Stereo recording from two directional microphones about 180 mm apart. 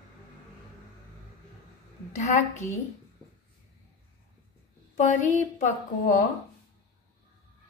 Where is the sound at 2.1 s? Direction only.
40° left (ahead or behind).